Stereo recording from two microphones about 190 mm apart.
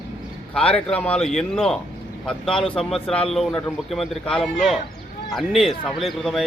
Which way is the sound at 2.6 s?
30° left (ahead or behind).